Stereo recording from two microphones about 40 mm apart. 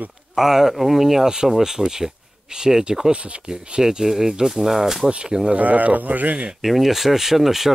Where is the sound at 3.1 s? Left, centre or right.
Right.